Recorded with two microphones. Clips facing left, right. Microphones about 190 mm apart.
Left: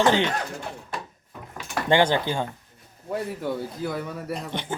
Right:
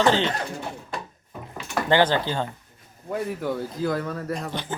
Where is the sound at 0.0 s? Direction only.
15° left (ahead or behind).